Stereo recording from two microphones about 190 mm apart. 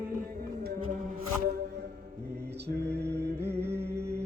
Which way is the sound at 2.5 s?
60° right (ahead or behind).